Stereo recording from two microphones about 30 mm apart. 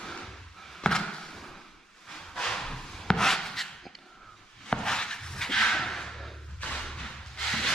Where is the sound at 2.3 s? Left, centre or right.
Left.